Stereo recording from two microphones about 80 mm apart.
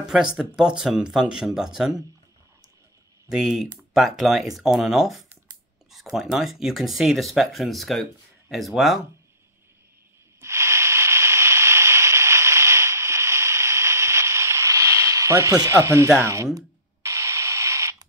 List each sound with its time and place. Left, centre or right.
0.1 s speech: centre
3.3 s speech: centre
10.4 s a sound: right
15.7 s speech: right
17.0 s radio: right